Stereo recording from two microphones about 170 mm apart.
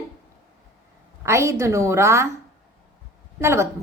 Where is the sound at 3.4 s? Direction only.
15° right (ahead or behind).